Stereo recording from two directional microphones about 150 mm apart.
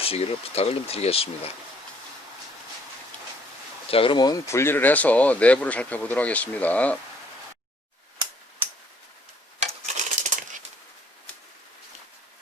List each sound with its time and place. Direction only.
0.0 s speech: 40° left (ahead or behind)
3.9 s speech: 35° left (ahead or behind); by 7.0 s 10° left (ahead or behind)
9.8 s crumpling: 60° right (ahead or behind)